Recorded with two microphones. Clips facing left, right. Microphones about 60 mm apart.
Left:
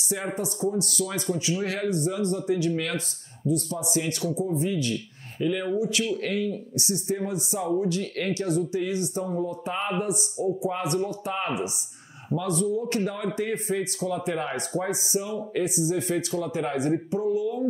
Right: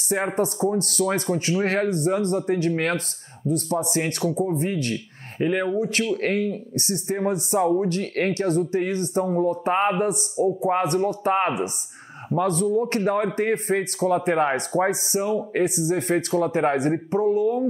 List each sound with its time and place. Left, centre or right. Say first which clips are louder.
0.3 s speech: right 6 dB; right
0.7 s speech: right 5 dB; right